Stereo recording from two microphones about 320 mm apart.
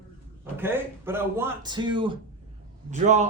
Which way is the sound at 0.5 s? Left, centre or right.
Centre.